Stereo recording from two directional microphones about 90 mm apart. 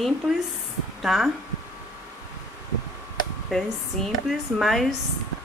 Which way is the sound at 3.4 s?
5° left (ahead or behind).